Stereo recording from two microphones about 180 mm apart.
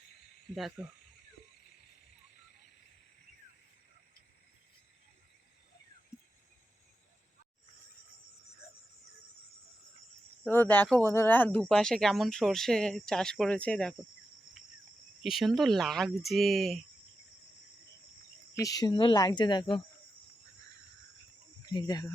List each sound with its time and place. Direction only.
0.5 s speech: centre (ahead or behind)
10.4 s speech: 10° left (ahead or behind)
15.2 s speech: centre (ahead or behind)
18.5 s speech: 20° left (ahead or behind)
21.7 s speech: 20° left (ahead or behind)